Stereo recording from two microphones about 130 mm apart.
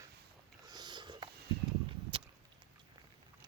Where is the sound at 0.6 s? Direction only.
35° right (ahead or behind).